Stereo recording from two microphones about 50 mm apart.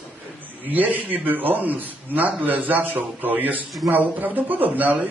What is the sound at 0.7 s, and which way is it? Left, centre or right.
A man's voice, right.